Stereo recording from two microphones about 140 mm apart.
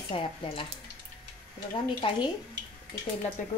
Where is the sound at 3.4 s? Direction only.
65° left (ahead or behind).